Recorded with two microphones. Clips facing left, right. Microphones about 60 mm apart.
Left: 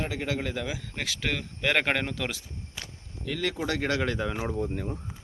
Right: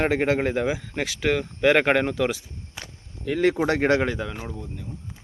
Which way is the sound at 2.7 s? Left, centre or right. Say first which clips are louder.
Right 3 dB; centre.